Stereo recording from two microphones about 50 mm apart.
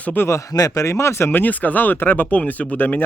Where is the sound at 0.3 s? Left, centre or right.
Left.